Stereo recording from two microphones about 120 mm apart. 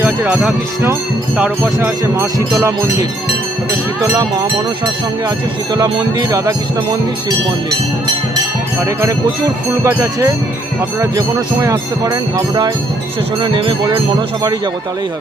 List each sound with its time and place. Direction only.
0.0 s speech: 5° right (ahead or behind)
1.4 s music: 15° right (ahead or behind)
2.6 s speech: 25° right (ahead or behind)
5.7 s speech: 35° right (ahead or behind)
8.8 s speech: 20° right (ahead or behind); by 14.0 s 45° right (ahead or behind)